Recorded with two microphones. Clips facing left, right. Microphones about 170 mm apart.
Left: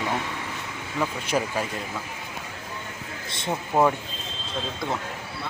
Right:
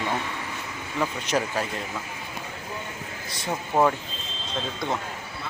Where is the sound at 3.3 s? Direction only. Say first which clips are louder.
Left 2 dB; 25° left (ahead or behind).